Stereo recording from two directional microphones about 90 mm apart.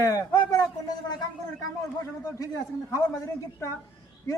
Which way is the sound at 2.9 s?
40° left (ahead or behind).